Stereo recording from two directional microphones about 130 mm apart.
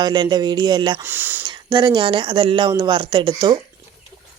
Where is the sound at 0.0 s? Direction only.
35° right (ahead or behind).